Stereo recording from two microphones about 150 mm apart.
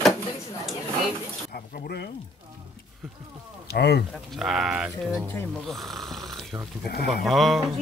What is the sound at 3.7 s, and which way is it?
Speech, 90° left.